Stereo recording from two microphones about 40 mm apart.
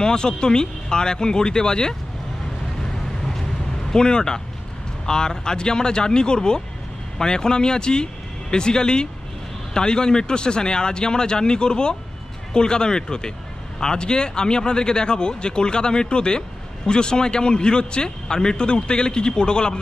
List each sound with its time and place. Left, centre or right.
0.0 s speech: centre
3.9 s speech: centre